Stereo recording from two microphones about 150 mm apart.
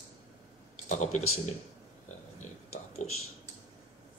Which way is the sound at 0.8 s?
55° left (ahead or behind).